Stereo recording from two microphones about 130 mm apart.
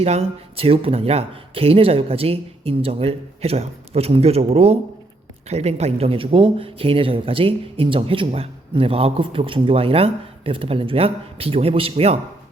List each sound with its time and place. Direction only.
0.0 s speech: 50° right (ahead or behind)